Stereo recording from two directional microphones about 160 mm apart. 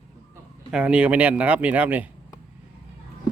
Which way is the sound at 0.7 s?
5° right (ahead or behind).